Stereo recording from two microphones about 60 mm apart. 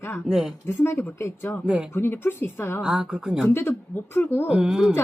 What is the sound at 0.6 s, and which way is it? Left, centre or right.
A woman's voice, left.